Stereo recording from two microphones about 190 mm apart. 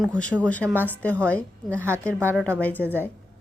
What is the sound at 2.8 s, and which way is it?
Speech, 10° right (ahead or behind).